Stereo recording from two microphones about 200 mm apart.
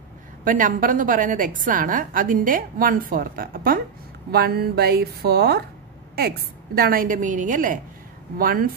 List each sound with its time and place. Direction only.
0.5 s a woman's voice: 40° right (ahead or behind)